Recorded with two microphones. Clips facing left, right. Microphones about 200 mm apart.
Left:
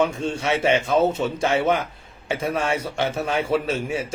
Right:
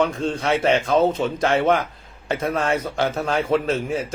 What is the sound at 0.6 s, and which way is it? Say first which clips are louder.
Speech: right 1 dB; 5° left (ahead or behind).